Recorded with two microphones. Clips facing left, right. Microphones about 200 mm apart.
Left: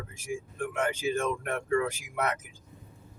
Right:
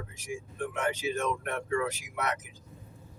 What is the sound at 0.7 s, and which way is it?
Speech, 50° left (ahead or behind).